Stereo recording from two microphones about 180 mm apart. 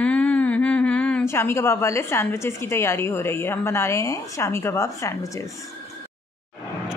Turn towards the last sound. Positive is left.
turn(degrees=15)  # may be behind; listen again after turning